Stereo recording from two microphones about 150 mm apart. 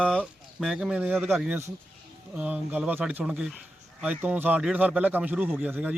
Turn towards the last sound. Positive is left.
turn(degrees=-10)  # may be behind; listen again after turning